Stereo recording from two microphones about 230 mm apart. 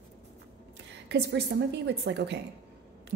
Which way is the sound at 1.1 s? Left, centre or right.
Right.